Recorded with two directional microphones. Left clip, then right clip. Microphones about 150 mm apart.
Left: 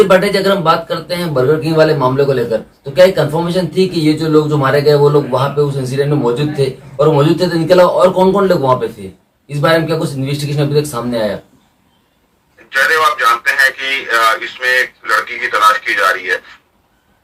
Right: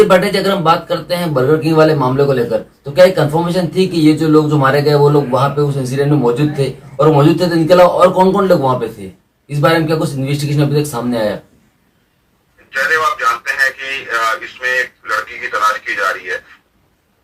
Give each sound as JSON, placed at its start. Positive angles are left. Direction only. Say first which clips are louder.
{"t": 0.0, "sound": "speech", "louder": "left 1 dB", "side_deg": 0}
{"t": 12.7, "sound": "speech", "louder": "left 3 dB", "side_deg": 25}